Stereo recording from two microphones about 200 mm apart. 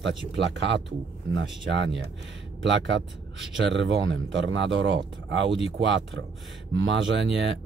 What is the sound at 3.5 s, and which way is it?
Speech, 65° right (ahead or behind).